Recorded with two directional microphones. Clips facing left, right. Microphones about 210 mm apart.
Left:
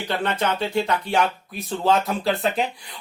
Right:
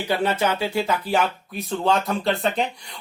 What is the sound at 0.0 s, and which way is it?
Speech, 10° right (ahead or behind).